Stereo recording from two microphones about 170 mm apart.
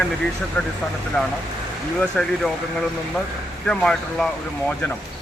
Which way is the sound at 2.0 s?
5° left (ahead or behind).